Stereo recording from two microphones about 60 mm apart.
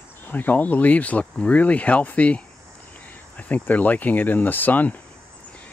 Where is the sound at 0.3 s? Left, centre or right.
Left.